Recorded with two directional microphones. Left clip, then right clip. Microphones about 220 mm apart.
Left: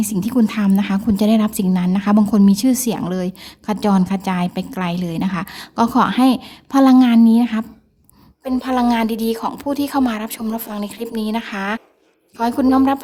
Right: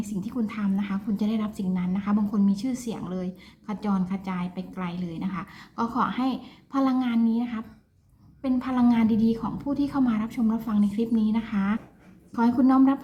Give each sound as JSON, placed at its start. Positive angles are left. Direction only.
{"t": 0.0, "sound": "speech", "side_deg": 50}